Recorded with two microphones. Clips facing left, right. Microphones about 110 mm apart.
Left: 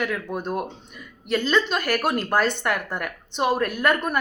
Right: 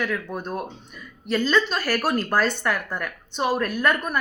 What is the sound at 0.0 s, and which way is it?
A woman's voice, 15° left (ahead or behind).